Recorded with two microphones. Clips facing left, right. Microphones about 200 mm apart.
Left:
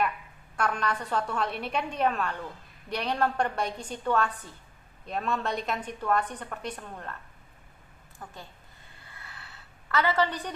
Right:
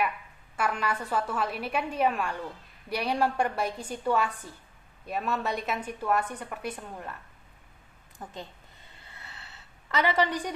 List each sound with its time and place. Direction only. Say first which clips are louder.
0.5 s a woman's voice: even; 5° right (ahead or behind)
8.2 s speech: right 4 dB; 20° right (ahead or behind)
9.0 s a sound: even; 25° right (ahead or behind)